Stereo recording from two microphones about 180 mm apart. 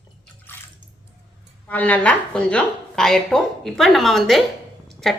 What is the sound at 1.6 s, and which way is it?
A woman's voice, 10° left (ahead or behind).